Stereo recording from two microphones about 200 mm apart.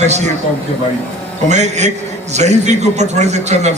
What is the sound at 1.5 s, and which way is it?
A man's voice, 35° right (ahead or behind).